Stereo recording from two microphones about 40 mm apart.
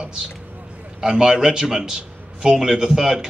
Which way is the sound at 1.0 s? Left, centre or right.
Centre.